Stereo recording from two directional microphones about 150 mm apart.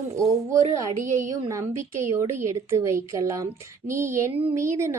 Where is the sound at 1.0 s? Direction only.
55° right (ahead or behind).